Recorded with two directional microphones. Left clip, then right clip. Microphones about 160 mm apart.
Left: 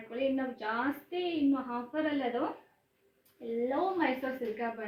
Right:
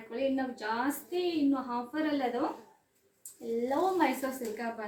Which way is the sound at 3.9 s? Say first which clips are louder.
Right 2 dB; 25° right (ahead or behind).